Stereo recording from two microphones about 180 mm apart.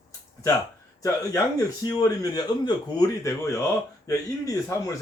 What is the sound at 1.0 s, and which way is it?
Speech, 20° left (ahead or behind).